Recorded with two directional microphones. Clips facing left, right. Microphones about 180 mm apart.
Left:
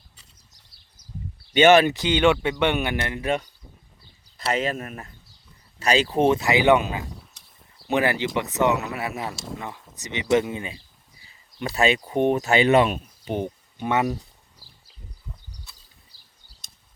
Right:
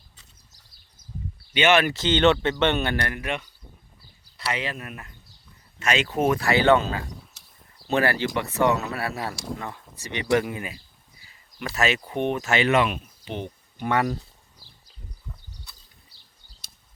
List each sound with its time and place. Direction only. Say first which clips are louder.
1.5 s speech: left 5 dB; 45° left (ahead or behind)
1.9 s speech: even; 15° left (ahead or behind)
3.2 s speech: left 5 dB; 40° left (ahead or behind)
4.5 s speech: left 6 dB; 45° left (ahead or behind); by 7.0 s 15° left (ahead or behind)
7.3 s a sound: even; centre (ahead or behind)
7.9 s speech: left 1 dB; 15° left (ahead or behind); by 13.5 s 45° left (ahead or behind)
13.7 s speech: left 1 dB; 20° left (ahead or behind)